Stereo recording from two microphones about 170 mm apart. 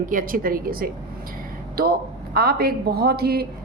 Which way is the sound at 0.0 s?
55° right (ahead or behind).